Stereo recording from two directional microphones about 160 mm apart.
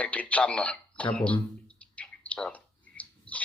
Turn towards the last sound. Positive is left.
turn(degrees=10)  # may be behind; listen again after turning